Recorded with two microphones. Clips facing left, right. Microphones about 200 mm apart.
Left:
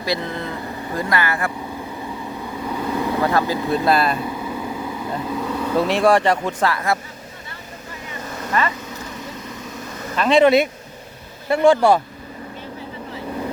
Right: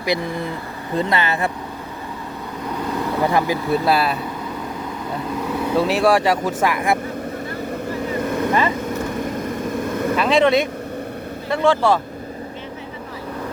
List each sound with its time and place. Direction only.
0.0 s speech: 15° right (ahead or behind)
2.6 s vehicle: 5° left (ahead or behind)
3.2 s speech: 15° right (ahead or behind)
5.3 s speech: centre (ahead or behind)
8.2 s vehicle: 55° right (ahead or behind)
10.2 s speech: centre (ahead or behind)